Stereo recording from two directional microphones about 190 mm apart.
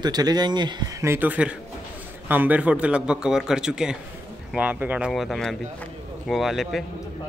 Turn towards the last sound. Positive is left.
turn(degrees=0)  # may be behind; listen again after turning